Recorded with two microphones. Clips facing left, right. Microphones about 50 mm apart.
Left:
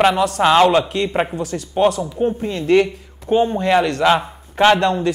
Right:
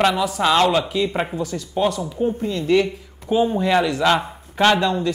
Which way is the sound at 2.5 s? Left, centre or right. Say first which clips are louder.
Left 4 dB; centre.